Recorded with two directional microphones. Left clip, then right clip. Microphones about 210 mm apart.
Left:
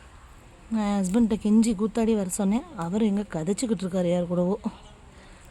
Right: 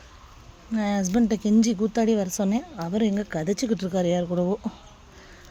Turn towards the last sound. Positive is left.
turn(degrees=10)  # may be behind; listen again after turning